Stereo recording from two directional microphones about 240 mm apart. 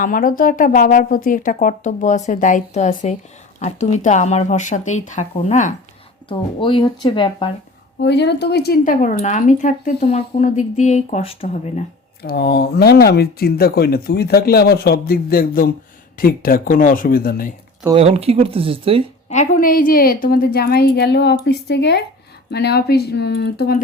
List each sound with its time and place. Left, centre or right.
0.0 s speech: left
6.2 s speech: left
7.9 s speech: left
12.2 s speech: left
17.9 s speech: right
19.3 s speech: left